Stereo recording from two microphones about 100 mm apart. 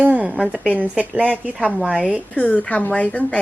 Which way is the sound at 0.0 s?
15° right (ahead or behind).